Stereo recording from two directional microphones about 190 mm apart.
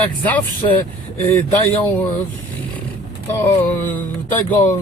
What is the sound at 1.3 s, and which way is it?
Speech, 10° left (ahead or behind).